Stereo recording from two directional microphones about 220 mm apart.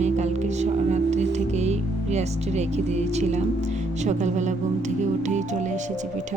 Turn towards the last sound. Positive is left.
turn(degrees=-35)  # may be behind; listen again after turning